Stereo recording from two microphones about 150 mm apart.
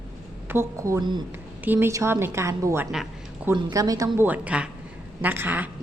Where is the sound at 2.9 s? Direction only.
5° right (ahead or behind).